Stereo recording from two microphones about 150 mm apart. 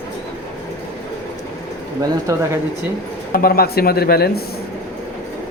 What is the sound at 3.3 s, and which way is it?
Speech, 85° left.